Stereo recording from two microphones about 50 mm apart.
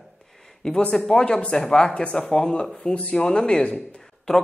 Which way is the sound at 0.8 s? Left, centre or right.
Left.